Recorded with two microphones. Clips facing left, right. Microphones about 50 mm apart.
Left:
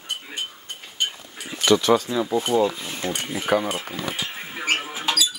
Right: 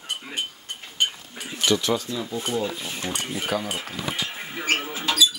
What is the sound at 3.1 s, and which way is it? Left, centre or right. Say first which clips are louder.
Speech: left 5 dB; left.